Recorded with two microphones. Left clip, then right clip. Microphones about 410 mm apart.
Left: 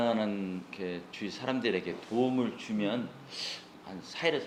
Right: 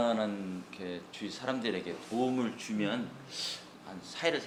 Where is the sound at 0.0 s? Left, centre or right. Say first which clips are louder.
Even; left.